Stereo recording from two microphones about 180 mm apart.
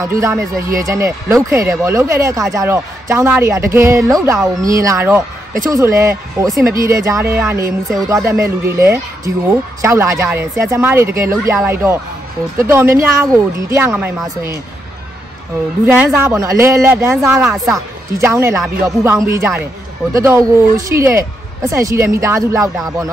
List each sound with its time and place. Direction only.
0.0 s speech: 15° right (ahead or behind)
15.8 s speech: 10° right (ahead or behind)